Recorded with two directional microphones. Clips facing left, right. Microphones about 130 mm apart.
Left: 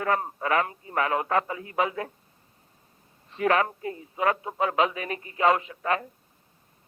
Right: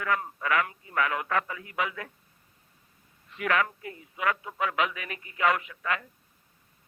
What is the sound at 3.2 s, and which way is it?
A man's voice, 30° left (ahead or behind).